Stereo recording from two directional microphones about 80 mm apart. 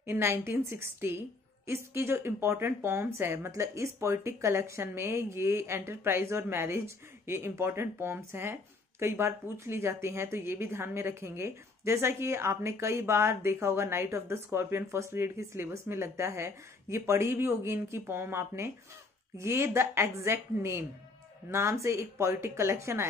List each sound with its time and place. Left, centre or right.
0.0 s a woman's voice: right